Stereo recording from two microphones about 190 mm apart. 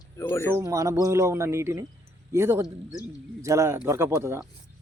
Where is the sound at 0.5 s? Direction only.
15° right (ahead or behind).